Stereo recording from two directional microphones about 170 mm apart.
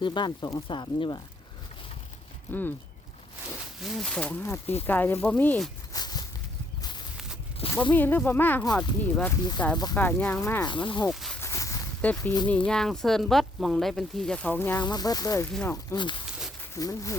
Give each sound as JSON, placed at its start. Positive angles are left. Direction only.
{"t": 0.0, "sound": "speech", "side_deg": 25}
{"t": 2.5, "sound": "speech", "side_deg": 10}
{"t": 3.8, "sound": "speech", "side_deg": 0}
{"t": 4.6, "sound": "speech", "side_deg": 35}
{"t": 4.9, "sound": "speech", "side_deg": 10}
{"t": 5.9, "sound": "a sound", "side_deg": 25}
{"t": 7.8, "sound": "speech", "side_deg": 10}
{"t": 10.7, "sound": "speech", "side_deg": 25}
{"t": 11.0, "sound": "speech", "side_deg": 0}
{"t": 11.3, "sound": "a sound", "side_deg": 15}
{"t": 12.5, "sound": "speech", "side_deg": 5}
{"t": 14.8, "sound": "speech", "side_deg": 25}